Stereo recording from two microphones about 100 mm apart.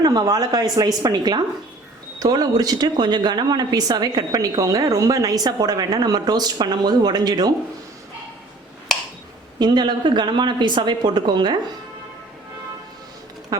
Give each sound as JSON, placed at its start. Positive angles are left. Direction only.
{"t": 0.0, "sound": "speech", "side_deg": -40}
{"t": 9.6, "sound": "speech", "side_deg": -45}
{"t": 13.5, "sound": "speech", "side_deg": -40}